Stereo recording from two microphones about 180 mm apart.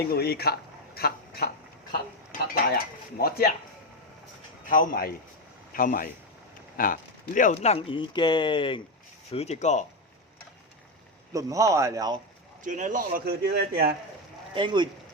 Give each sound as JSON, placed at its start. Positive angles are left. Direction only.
{"t": 0.1, "sound": "a man's voice", "side_deg": 60}
{"t": 2.7, "sound": "speech", "side_deg": 55}
{"t": 4.6, "sound": "speech", "side_deg": 50}
{"t": 11.3, "sound": "speech", "side_deg": -20}
{"t": 12.6, "sound": "speech", "side_deg": -45}
{"t": 14.5, "sound": "speech", "side_deg": -25}